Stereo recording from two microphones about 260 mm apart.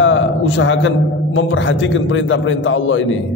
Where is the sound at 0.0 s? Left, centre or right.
Left.